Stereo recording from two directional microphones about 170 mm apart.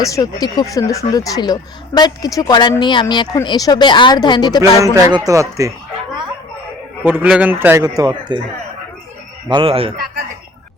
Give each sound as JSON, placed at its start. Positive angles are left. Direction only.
{"t": 0.0, "sound": "speech", "side_deg": 20}
{"t": 4.8, "sound": "speech", "side_deg": -20}
{"t": 7.0, "sound": "a man's voice", "side_deg": -10}
{"t": 9.5, "sound": "speech", "side_deg": -30}